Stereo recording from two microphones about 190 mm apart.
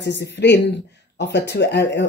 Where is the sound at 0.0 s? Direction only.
65° left (ahead or behind).